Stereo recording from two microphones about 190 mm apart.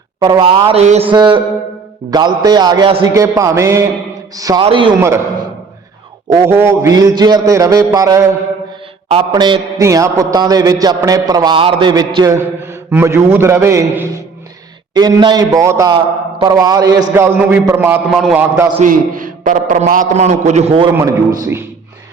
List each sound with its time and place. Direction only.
0.2 s a man's voice: 20° right (ahead or behind)
1.1 s a man's voice: 25° right (ahead or behind)
3.2 s a man's voice: 15° right (ahead or behind)
4.9 s a man's voice: 15° right (ahead or behind)
6.4 s a man's voice: 10° right (ahead or behind)
18.8 s a man's voice: 45° right (ahead or behind)
20.9 s a man's voice: 15° right (ahead or behind)